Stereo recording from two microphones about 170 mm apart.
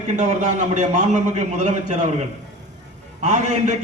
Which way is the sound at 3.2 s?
45° right (ahead or behind).